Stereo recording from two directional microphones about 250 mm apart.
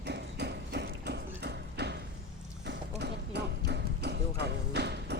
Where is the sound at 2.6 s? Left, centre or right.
Right.